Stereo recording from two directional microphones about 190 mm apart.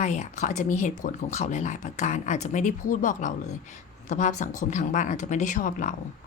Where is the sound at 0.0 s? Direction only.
40° left (ahead or behind).